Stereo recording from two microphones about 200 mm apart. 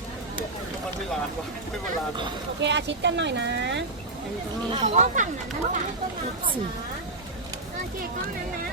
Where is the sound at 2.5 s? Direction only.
60° right (ahead or behind).